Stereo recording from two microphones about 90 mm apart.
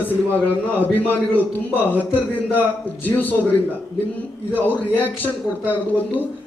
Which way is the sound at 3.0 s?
20° left (ahead or behind).